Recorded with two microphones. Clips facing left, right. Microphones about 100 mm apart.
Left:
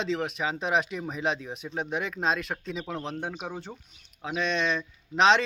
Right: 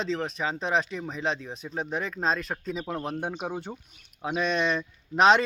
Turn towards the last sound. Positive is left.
turn(degrees=-5)  # may be behind; listen again after turning